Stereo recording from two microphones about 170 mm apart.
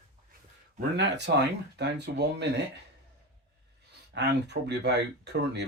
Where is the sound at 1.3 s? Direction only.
80° right.